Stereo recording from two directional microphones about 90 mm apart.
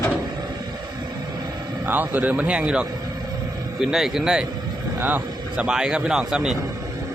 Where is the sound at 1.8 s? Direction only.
20° right (ahead or behind).